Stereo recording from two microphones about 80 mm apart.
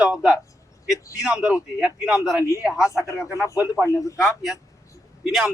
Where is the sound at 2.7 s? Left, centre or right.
Left.